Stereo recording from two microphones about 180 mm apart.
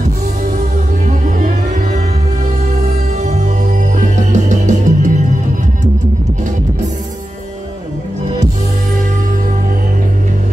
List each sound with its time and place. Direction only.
1.2 s music: 45° right (ahead or behind)
4.0 s music: 40° right (ahead or behind)